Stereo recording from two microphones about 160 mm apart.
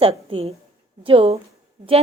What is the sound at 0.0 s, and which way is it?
A woman's voice, 35° right (ahead or behind).